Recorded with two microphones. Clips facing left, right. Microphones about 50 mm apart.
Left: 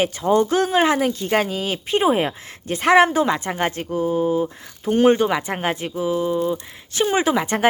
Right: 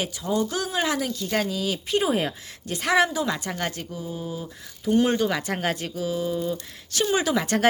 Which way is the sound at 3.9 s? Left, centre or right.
Left.